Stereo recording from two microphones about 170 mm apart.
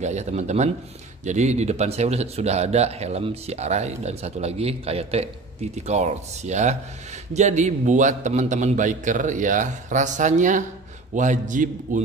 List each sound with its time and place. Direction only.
0.0 s a man's voice: 40° right (ahead or behind)